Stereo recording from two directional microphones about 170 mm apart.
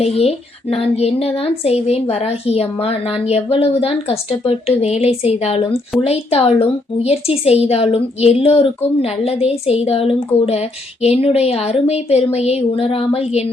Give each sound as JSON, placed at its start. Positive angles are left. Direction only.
{"t": 0.0, "sound": "a woman's voice", "side_deg": 40}